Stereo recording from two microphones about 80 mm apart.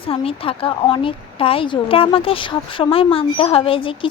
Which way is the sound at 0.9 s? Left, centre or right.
Left.